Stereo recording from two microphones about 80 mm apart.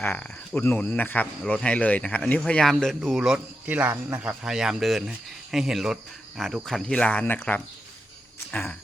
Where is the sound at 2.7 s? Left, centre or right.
Centre.